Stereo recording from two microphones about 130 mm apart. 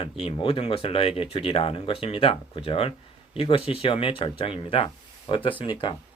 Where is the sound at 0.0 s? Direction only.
45° left (ahead or behind).